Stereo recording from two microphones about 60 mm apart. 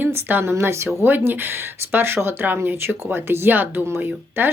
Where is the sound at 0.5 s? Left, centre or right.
Right.